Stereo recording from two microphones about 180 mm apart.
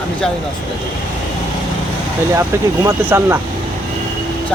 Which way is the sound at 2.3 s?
15° right (ahead or behind).